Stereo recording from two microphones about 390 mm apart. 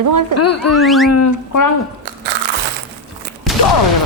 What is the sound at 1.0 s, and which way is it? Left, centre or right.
Speech, left.